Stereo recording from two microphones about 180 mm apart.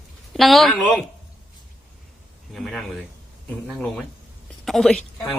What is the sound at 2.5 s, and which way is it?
Speech, centre (ahead or behind).